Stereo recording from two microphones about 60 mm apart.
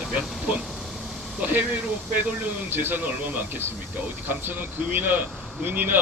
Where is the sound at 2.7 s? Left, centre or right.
Right.